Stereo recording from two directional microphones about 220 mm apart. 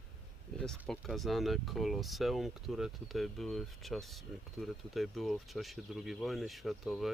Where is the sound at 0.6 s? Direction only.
Centre (ahead or behind).